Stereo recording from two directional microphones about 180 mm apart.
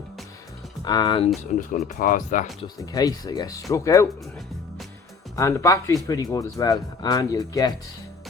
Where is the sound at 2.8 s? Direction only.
20° left (ahead or behind).